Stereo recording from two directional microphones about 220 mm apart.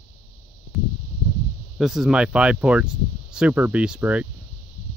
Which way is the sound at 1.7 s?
Centre (ahead or behind).